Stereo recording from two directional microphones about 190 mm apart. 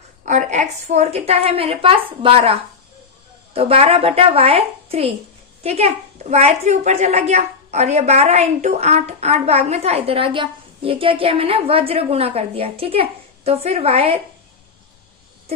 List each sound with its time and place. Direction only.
0.3 s a child's voice: 40° right (ahead or behind)